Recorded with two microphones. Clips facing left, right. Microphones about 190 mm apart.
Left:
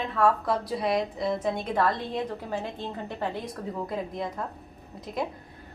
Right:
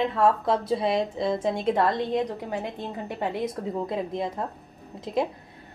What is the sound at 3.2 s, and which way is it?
A woman's voice, 20° right (ahead or behind).